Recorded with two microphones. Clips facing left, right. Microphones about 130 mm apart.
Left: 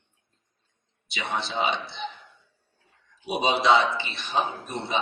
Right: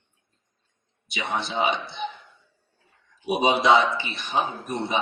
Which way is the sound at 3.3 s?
15° right (ahead or behind).